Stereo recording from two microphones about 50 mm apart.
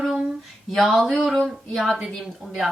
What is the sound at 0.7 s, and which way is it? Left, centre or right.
Speech, centre.